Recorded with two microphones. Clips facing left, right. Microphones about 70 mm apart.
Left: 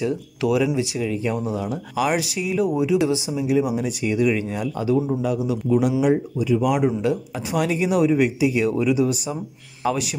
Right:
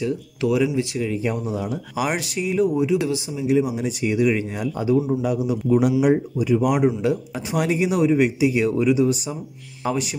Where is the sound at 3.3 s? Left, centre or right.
Centre.